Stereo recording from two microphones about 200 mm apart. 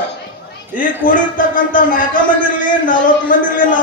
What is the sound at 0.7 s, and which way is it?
A man's voice, 40° left (ahead or behind).